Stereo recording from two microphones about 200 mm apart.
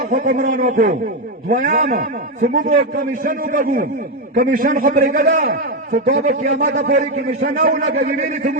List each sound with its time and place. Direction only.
0.0 s a man's voice: 40° right (ahead or behind)